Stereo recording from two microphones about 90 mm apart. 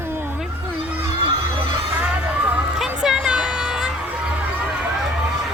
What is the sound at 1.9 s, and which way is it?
Music, 15° right (ahead or behind).